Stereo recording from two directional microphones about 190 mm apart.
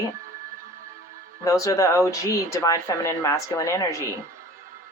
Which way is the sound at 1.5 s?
15° left (ahead or behind).